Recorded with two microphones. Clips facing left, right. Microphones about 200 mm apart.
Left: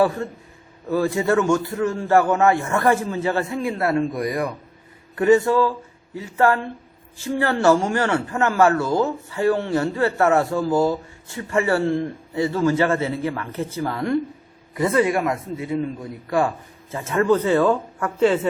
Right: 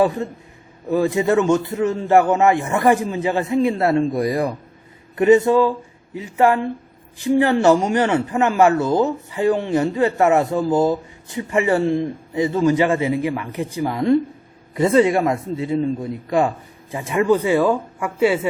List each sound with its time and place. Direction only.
0.0 s a man's voice: 20° right (ahead or behind)